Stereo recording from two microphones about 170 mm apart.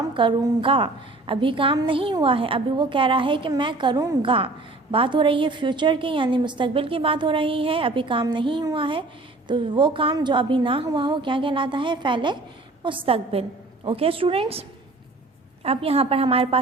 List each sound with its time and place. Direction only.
0.1 s a woman's voice: 30° right (ahead or behind)
4.3 s a woman's voice: 30° right (ahead or behind)
15.6 s a woman's voice: 35° right (ahead or behind)